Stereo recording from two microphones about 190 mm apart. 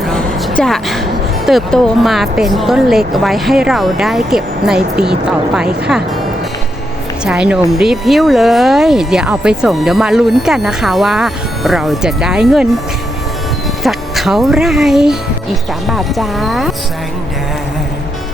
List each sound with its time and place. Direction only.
0.1 s a sound: 5° left (ahead or behind)
1.5 s speech: centre (ahead or behind)
7.3 s speech: 5° right (ahead or behind)
13.8 s speech: centre (ahead or behind)